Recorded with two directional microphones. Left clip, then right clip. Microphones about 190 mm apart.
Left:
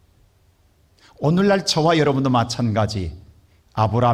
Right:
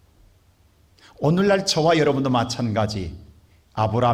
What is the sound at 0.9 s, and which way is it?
A man's voice, 10° left (ahead or behind).